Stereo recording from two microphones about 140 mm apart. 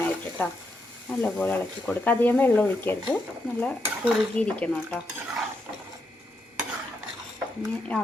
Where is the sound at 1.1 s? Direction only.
10° left (ahead or behind).